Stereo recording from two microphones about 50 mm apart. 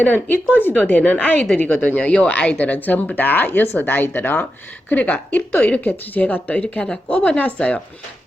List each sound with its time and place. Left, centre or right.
0.0 s speech: left
2.6 s speech: left
4.9 s speech: left